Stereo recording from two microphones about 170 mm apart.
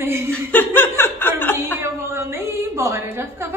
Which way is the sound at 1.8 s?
15° right (ahead or behind).